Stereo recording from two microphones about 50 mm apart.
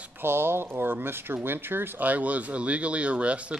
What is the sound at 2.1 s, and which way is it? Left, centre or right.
Speech, right.